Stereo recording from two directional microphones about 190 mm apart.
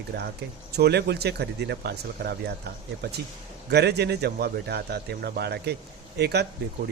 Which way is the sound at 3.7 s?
60° right (ahead or behind).